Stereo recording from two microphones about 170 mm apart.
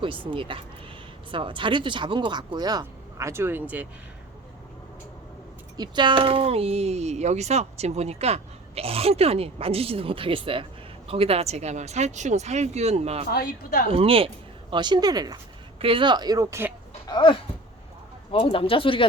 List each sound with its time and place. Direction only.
0.0 s speech: 30° right (ahead or behind); by 3.8 s 10° right (ahead or behind)
5.7 s speech: 25° right (ahead or behind)
13.3 s speech: 60° left (ahead or behind)
13.9 s speech: 35° right (ahead or behind); by 16.7 s 15° right (ahead or behind)
17.1 s speech: 30° left (ahead or behind)